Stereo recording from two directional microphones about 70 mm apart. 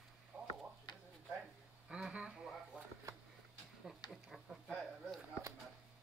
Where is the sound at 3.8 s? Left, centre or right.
Centre.